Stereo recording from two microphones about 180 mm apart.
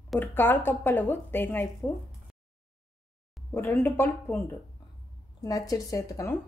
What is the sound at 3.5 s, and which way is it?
Speech, 10° left (ahead or behind).